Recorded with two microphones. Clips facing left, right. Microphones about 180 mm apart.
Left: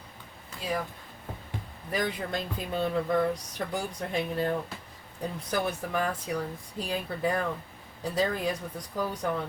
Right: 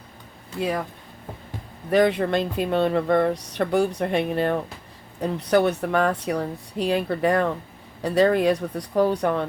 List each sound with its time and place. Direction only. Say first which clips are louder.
1.9 s speech: right 12 dB; 70° right (ahead or behind)